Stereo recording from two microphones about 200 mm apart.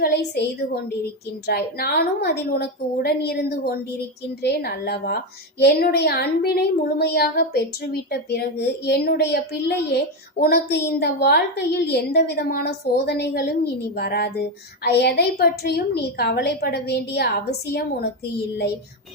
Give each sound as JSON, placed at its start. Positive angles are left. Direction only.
{"t": 0.0, "sound": "a woman's voice", "side_deg": 55}